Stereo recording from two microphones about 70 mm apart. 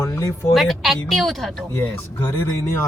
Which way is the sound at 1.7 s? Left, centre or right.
Left.